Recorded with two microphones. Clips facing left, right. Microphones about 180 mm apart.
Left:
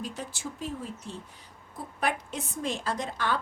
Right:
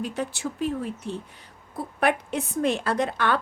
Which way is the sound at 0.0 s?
65° right (ahead or behind).